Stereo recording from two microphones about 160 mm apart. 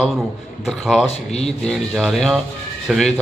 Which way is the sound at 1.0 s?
40° left (ahead or behind).